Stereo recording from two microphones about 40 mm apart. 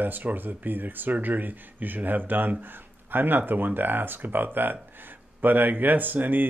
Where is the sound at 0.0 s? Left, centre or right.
Right.